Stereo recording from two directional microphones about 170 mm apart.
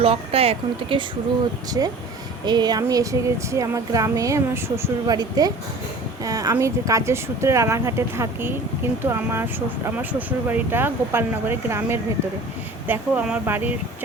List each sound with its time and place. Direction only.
0.0 s speech: 35° right (ahead or behind)
1.8 s speech: 20° right (ahead or behind)